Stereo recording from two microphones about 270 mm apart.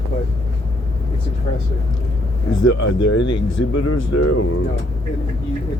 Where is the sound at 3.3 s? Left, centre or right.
Left.